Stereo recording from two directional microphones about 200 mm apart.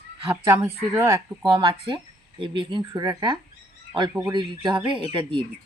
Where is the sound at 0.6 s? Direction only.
15° right (ahead or behind).